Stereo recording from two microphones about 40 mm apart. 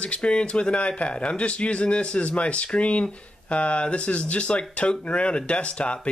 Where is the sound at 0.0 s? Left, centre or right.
Left.